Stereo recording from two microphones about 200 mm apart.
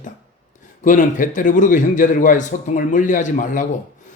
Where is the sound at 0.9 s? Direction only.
40° left (ahead or behind).